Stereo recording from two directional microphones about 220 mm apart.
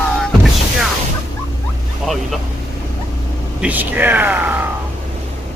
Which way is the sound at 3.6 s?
5° right (ahead or behind).